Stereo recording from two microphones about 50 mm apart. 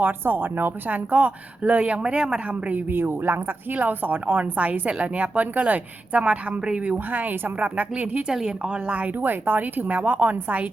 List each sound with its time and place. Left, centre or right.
0.0 s a woman's voice: right
2.0 s speech: centre
2.6 s a woman's voice: right
3.0 s a woman's voice: right
8.3 s a woman's voice: centre; by 10.3 s right